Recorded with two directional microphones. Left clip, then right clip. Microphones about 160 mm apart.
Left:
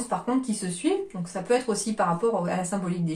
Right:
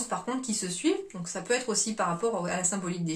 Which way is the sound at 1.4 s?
20° right (ahead or behind).